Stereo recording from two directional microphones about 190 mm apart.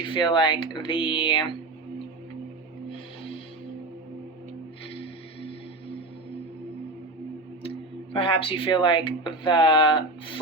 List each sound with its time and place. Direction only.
0.1 s speech: 25° left (ahead or behind)
7.6 s speech: 30° left (ahead or behind)